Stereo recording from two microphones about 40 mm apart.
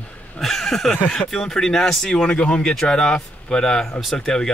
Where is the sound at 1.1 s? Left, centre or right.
Centre.